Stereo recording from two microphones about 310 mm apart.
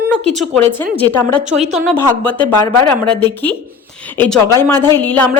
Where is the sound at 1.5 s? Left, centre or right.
Right.